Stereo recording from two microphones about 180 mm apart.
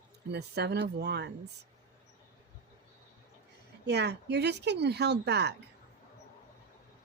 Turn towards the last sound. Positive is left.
turn(degrees=-65)  # may be behind; listen again after turning